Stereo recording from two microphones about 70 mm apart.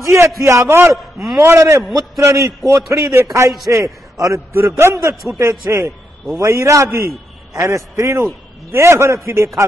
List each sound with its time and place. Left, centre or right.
0.0 s a man's voice: right
0.9 s a man's voice: centre
1.4 s a man's voice: right